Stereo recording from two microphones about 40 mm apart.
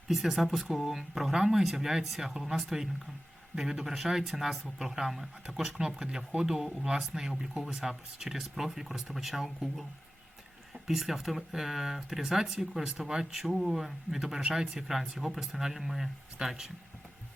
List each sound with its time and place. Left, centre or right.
0.1 s speech: centre
10.8 s speech: centre
14.4 s speech: right
14.8 s speech: centre